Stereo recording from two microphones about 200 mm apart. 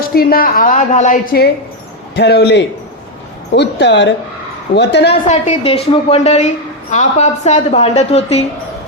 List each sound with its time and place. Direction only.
0.1 s a woman's voice: 50° left (ahead or behind)
5.1 s a woman's voice: 30° left (ahead or behind)